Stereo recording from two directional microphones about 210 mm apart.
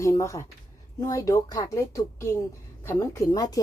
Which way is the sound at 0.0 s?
15° left (ahead or behind).